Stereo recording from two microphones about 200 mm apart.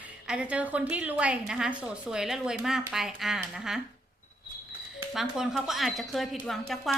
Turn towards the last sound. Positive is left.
turn(degrees=0)  # may be behind; listen again after turning